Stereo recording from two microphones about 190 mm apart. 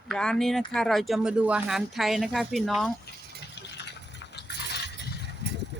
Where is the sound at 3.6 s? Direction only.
65° left (ahead or behind).